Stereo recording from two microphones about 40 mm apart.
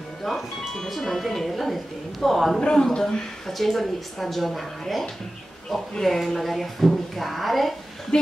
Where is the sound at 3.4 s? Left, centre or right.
Centre.